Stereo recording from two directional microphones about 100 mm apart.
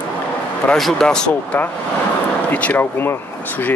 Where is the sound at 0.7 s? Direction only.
5° left (ahead or behind).